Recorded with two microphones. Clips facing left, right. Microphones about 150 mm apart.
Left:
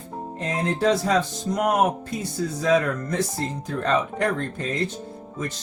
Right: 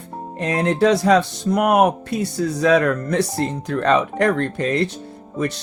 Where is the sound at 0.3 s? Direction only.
70° right (ahead or behind).